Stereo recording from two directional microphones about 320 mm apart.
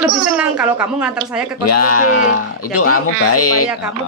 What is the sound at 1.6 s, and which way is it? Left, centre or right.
Speech, left.